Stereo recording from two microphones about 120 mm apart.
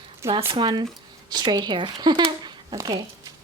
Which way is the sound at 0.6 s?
40° right (ahead or behind).